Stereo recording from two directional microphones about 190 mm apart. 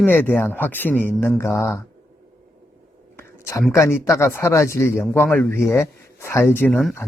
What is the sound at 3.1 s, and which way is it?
Whispering, 15° left (ahead or behind).